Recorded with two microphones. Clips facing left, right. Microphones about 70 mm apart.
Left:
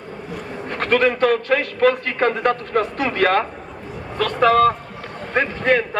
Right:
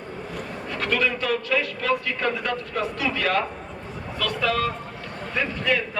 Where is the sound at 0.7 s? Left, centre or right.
Left.